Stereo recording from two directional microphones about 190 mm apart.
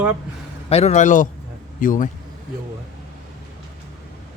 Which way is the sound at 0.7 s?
35° left (ahead or behind).